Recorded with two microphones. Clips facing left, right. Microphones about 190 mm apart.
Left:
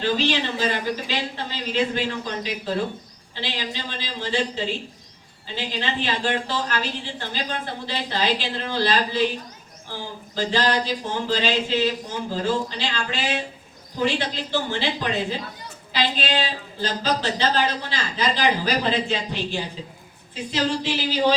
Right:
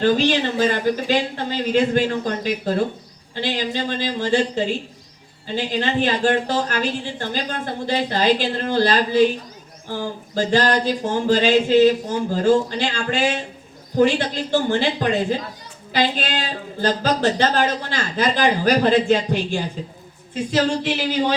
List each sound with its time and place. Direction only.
0.0 s speech: 50° right (ahead or behind)